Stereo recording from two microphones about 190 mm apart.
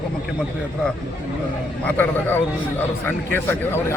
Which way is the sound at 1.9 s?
10° left (ahead or behind).